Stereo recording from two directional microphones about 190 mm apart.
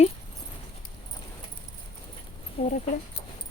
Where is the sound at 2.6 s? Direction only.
30° left (ahead or behind).